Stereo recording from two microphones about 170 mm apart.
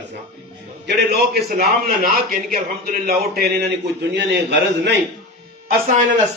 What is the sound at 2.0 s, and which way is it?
A man's voice, 60° right (ahead or behind).